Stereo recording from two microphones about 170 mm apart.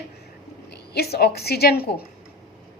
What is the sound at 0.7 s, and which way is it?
A woman's voice, 70° left (ahead or behind).